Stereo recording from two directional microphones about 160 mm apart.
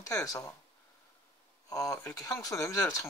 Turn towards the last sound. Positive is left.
turn(degrees=20)  # may be behind; listen again after turning